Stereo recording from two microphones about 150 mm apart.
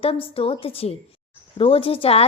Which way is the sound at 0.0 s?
40° left (ahead or behind).